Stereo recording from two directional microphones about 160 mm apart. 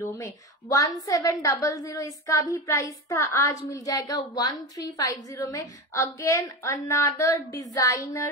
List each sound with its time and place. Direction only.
0.0 s a woman's voice: 20° left (ahead or behind)